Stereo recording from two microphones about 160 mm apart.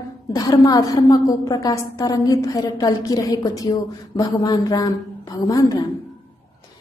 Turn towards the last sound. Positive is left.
turn(degrees=20)  # may be behind; listen again after turning